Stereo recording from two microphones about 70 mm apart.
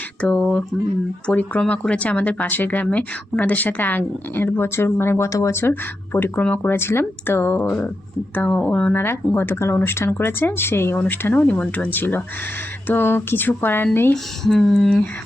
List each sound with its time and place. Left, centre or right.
0.2 s a sound: centre
1.3 s a woman's voice: centre; by 5.7 s left
6.3 s speech: centre
6.6 s speech: left
7.6 s a woman's voice: centre
9.0 s a woman's voice: left
14.4 s speech: centre